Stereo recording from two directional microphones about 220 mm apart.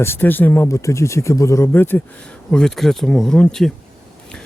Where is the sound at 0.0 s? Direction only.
10° left (ahead or behind).